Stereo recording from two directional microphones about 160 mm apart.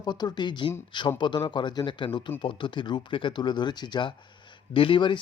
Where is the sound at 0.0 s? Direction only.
25° left (ahead or behind).